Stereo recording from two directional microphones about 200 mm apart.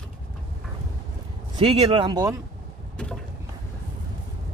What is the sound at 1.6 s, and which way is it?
Speech, 25° right (ahead or behind).